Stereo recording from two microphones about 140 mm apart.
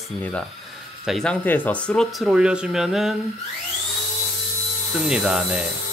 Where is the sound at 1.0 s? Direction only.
Centre (ahead or behind).